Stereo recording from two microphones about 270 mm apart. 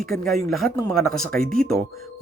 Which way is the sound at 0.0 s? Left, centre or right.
Centre.